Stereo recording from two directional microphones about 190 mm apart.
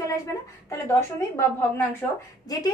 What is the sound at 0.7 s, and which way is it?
Speech, 15° left (ahead or behind).